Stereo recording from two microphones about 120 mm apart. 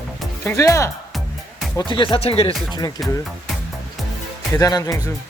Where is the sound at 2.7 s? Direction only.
35° left (ahead or behind).